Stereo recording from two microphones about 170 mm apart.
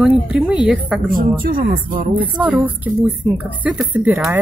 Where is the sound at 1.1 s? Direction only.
55° right (ahead or behind).